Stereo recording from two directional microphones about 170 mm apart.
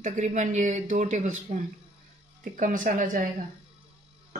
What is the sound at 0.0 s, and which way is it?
Speech, 45° right (ahead or behind).